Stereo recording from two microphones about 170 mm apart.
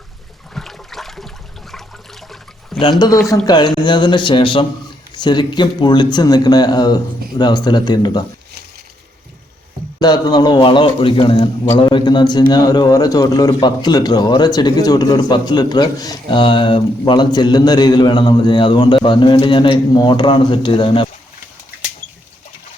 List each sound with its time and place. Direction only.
0.5 s water: centre (ahead or behind)
3.4 s a man's voice: 25° left (ahead or behind)
10.0 s a man's voice: 25° left (ahead or behind)